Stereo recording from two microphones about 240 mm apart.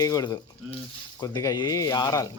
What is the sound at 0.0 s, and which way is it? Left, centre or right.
Speech, centre.